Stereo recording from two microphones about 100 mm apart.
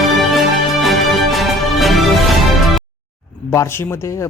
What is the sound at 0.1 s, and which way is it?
Music, centre (ahead or behind).